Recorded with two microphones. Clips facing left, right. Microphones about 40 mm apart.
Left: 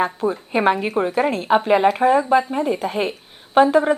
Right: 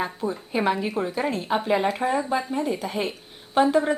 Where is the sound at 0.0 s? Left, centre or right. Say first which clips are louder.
Left 7 dB; left.